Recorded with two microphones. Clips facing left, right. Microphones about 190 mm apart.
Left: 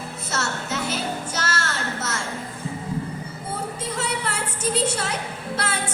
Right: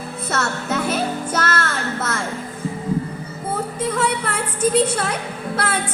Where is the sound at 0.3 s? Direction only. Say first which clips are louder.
Right 5 dB; 55° right (ahead or behind).